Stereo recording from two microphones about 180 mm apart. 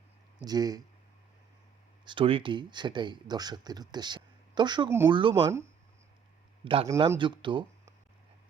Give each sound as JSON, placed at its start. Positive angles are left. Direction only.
{"t": 0.4, "sound": "speech", "side_deg": -20}
{"t": 2.0, "sound": "speech", "side_deg": -30}
{"t": 6.8, "sound": "speech", "side_deg": -20}